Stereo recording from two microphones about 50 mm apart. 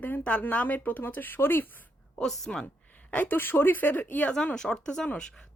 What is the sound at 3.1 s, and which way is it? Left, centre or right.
Speech, left.